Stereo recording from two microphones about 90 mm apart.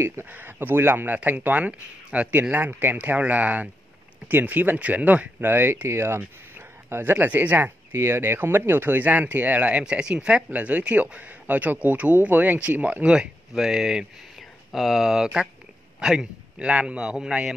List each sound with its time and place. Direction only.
0.0 s speech: 25° right (ahead or behind); by 17.6 s 10° right (ahead or behind)